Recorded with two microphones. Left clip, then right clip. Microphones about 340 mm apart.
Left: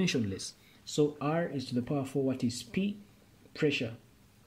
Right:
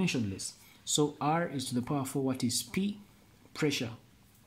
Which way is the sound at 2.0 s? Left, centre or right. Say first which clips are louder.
Left 1 dB; centre.